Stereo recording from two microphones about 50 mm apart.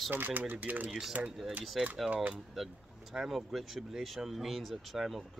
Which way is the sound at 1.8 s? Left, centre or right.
Centre.